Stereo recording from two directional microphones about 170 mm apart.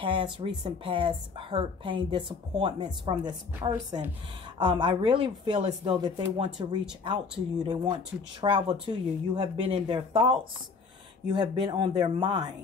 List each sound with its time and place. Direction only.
0.0 s speech: 30° right (ahead or behind)